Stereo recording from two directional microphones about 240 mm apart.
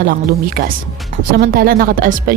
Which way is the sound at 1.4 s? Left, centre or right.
Right.